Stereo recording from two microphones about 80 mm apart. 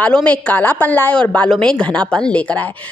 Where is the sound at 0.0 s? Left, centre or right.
Centre.